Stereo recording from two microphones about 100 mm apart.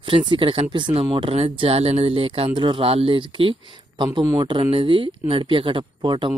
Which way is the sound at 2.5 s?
55° right (ahead or behind).